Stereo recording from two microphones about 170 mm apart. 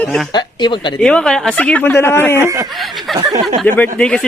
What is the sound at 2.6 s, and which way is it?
A man's voice, centre (ahead or behind).